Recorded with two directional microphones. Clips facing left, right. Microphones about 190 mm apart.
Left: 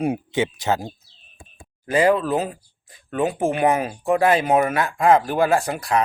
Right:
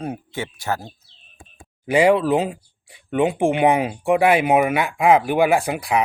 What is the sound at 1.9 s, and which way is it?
Speech, 15° right (ahead or behind).